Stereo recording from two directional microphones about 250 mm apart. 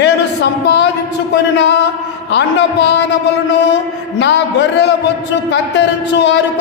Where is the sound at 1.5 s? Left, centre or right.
Left.